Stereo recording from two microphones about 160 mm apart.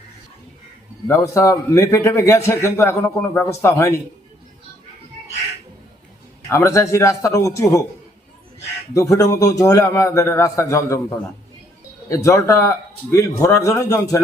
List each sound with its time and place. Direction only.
1.0 s a man's voice: 20° left (ahead or behind)
6.5 s a man's voice: 15° left (ahead or behind)
8.9 s a man's voice: 20° left (ahead or behind)
12.0 s a man's voice: 20° left (ahead or behind)